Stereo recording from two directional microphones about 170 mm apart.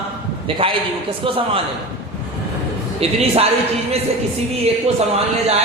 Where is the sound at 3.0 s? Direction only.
35° right (ahead or behind).